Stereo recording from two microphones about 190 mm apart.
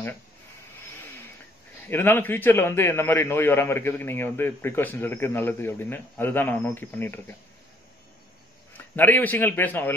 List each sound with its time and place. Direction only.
1.9 s a man's voice: 10° left (ahead or behind)
8.7 s a man's voice: 10° left (ahead or behind)